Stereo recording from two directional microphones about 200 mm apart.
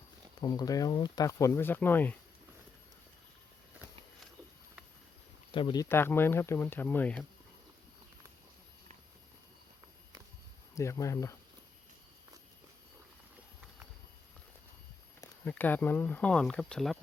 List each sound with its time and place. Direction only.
0.4 s speech: 20° left (ahead or behind)
5.5 s speech: 25° left (ahead or behind); by 7.3 s 5° left (ahead or behind)
10.8 s speech: 15° left (ahead or behind)
15.2 s speech: 10° left (ahead or behind)